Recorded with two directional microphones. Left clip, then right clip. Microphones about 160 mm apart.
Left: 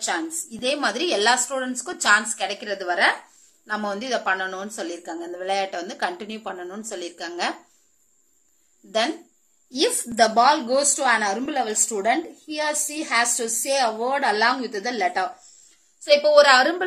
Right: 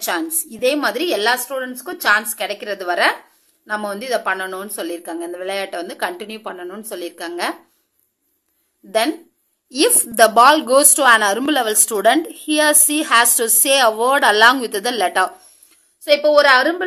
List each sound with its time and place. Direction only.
0.0 s a woman's voice: 35° right (ahead or behind)
3.6 s a woman's voice: 25° right (ahead or behind)
10.1 s a woman's voice: 45° right (ahead or behind)
15.7 s a woman's voice: 30° right (ahead or behind)